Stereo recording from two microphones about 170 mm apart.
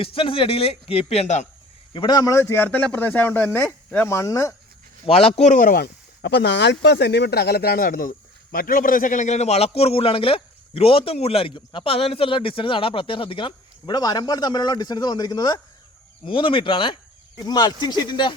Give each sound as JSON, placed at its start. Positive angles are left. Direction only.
{"t": 0.0, "sound": "a man's voice", "side_deg": 30}
{"t": 1.9, "sound": "a man's voice", "side_deg": 25}
{"t": 5.0, "sound": "a man's voice", "side_deg": 35}